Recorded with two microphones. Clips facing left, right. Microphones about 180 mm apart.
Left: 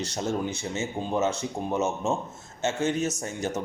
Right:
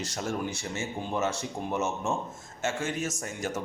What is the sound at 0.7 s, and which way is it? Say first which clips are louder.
A man's voice: left 4 dB; 20° left (ahead or behind).